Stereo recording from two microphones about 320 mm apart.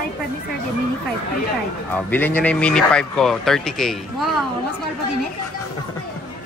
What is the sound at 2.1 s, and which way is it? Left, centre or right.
Speech, centre.